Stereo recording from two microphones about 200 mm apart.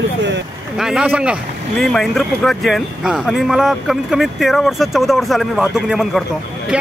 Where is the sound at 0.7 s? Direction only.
Centre (ahead or behind).